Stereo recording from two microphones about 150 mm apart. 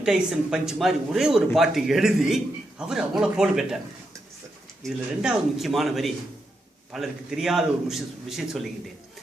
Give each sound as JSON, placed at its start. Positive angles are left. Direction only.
{"t": 0.0, "sound": "a man's voice", "side_deg": -5}
{"t": 4.8, "sound": "a man's voice", "side_deg": 0}